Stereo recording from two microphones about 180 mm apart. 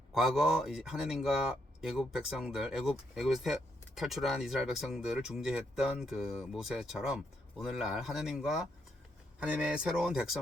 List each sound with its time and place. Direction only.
0.1 s speech: centre (ahead or behind)